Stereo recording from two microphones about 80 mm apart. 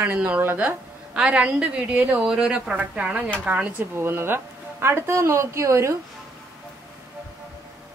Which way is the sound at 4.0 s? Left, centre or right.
Right.